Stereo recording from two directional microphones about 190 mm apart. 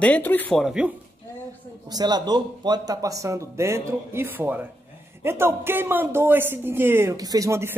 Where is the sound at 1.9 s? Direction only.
20° right (ahead or behind).